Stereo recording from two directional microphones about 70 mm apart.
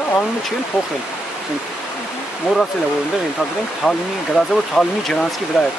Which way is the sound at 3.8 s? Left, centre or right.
Centre.